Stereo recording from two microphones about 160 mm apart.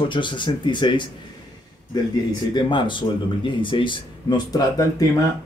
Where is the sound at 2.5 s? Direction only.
30° left (ahead or behind).